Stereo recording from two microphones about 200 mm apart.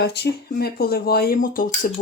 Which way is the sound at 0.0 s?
55° left (ahead or behind).